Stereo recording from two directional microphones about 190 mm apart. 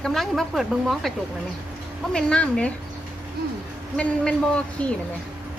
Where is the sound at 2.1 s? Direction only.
5° left (ahead or behind).